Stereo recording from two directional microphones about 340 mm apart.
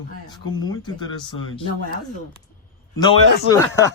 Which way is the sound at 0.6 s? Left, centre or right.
Centre.